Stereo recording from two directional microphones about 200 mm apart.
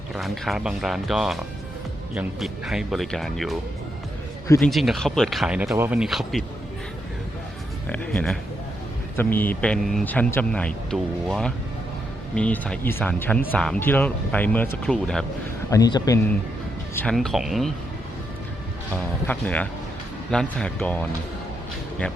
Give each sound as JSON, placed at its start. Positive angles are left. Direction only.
{"t": 0.1, "sound": "a man's voice", "side_deg": 0}
{"t": 4.6, "sound": "a man's voice", "side_deg": 0}
{"t": 7.9, "sound": "a man's voice", "side_deg": 5}
{"t": 15.7, "sound": "speech", "side_deg": 20}
{"t": 16.9, "sound": "a man's voice", "side_deg": 5}
{"t": 19.3, "sound": "a man's voice", "side_deg": 5}